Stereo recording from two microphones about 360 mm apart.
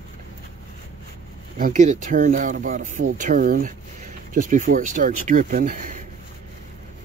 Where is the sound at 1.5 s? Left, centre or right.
Right.